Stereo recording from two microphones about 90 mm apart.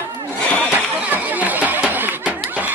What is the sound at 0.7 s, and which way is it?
Chatter, 20° right (ahead or behind).